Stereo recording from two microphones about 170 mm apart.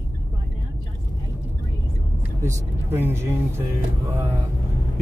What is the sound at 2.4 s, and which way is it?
Speech, 15° right (ahead or behind).